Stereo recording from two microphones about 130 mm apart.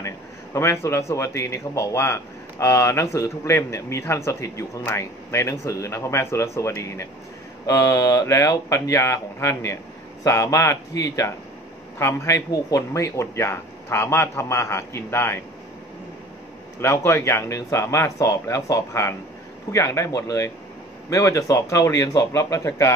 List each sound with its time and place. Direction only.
0.0 s a man's voice: 20° left (ahead or behind)
16.8 s a man's voice: 20° left (ahead or behind)